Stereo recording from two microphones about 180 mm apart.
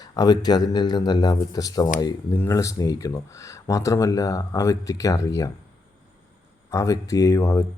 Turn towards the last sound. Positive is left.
turn(degrees=15)  # may be behind; listen again after turning